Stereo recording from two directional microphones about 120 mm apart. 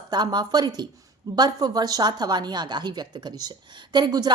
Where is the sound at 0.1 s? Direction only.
35° right (ahead or behind).